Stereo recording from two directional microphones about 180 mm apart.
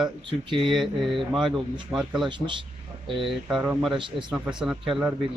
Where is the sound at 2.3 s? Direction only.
25° right (ahead or behind).